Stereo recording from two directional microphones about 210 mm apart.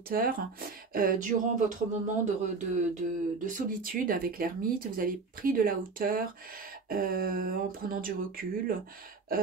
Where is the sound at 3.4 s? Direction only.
40° right (ahead or behind).